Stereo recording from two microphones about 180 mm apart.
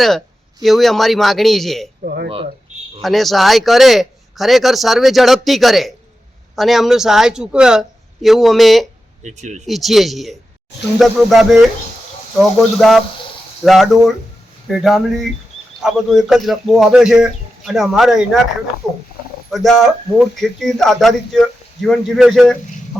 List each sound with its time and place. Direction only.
0.6 s speech: centre (ahead or behind)
2.0 s speech: 60° right (ahead or behind)
3.0 s speech: centre (ahead or behind)
9.2 s speech: 40° right (ahead or behind)
9.6 s speech: centre (ahead or behind)
19.5 s speech: centre (ahead or behind)